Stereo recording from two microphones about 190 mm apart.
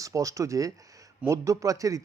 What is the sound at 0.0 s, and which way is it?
Speech, 15° right (ahead or behind).